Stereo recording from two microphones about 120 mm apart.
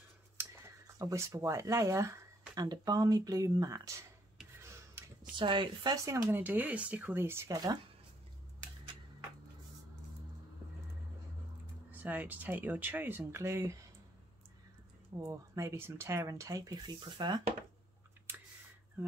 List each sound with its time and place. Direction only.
0.4 s speech: 25° right (ahead or behind)
4.6 s a sound: 20° right (ahead or behind)
5.3 s speech: 40° right (ahead or behind)
6.2 s speech: 15° right (ahead or behind)
7.5 s speech: 35° right (ahead or behind)
11.9 s speech: 15° right (ahead or behind)
15.1 s speech: 25° right (ahead or behind)
19.0 s speech: 20° right (ahead or behind)